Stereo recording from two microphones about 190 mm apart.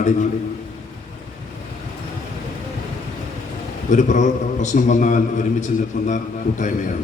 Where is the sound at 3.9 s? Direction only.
40° left (ahead or behind).